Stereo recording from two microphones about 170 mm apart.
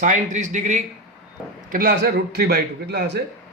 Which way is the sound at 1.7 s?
60° right (ahead or behind).